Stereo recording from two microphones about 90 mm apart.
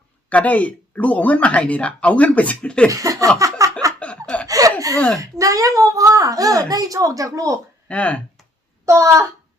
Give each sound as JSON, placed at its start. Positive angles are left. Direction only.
{"t": 0.3, "sound": "speech", "side_deg": 15}
{"t": 2.9, "sound": "a sound", "side_deg": -35}
{"t": 4.4, "sound": "chuckle", "side_deg": -40}
{"t": 5.4, "sound": "a woman's voice", "side_deg": -40}
{"t": 7.9, "sound": "speech", "side_deg": 15}
{"t": 8.9, "sound": "a woman's voice", "side_deg": -35}